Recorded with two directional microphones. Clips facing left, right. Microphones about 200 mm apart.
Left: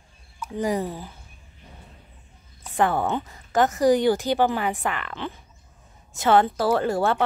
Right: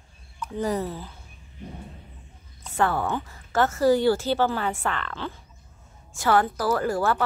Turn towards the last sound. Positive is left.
turn(degrees=25)  # may be behind; listen again after turning